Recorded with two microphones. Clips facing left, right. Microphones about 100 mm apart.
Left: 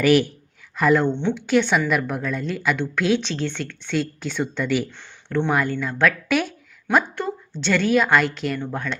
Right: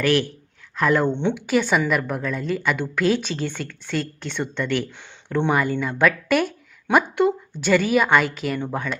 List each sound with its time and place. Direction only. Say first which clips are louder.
0.0 s speech: left 3 dB; 15° left (ahead or behind)
0.8 s speech: left 1 dB; centre (ahead or behind)
4.9 s a sound: even; 15° right (ahead or behind)
5.5 s speech: right 2 dB; centre (ahead or behind)
6.9 s speech: right 3 dB; 15° right (ahead or behind)